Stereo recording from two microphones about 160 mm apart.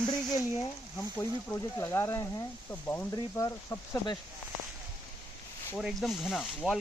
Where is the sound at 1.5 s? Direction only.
15° left (ahead or behind).